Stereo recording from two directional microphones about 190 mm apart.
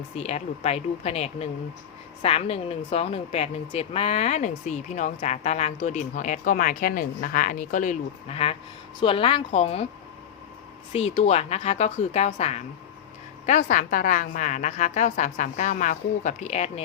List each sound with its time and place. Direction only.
0.2 s a woman's voice: 35° left (ahead or behind)
10.9 s speech: 35° left (ahead or behind)